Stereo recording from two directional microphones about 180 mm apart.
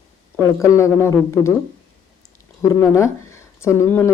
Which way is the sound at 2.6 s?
15° left (ahead or behind).